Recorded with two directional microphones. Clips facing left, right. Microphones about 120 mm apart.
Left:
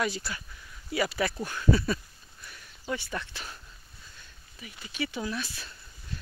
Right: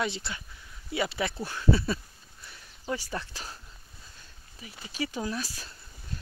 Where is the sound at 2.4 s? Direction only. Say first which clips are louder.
Right 1 dB; 30° right (ahead or behind).